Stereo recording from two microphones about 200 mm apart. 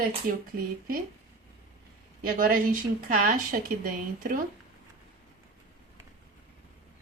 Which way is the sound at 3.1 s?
45° right (ahead or behind).